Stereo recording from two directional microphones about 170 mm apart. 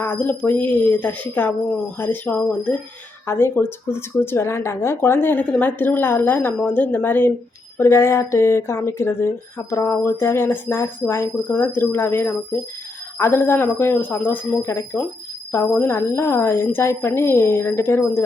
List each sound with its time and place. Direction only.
0.0 s speech: 10° left (ahead or behind)